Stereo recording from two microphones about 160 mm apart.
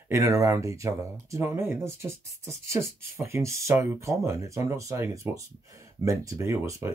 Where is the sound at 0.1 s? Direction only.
20° right (ahead or behind).